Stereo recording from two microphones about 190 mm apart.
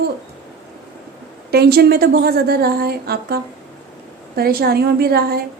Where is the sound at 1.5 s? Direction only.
55° right (ahead or behind).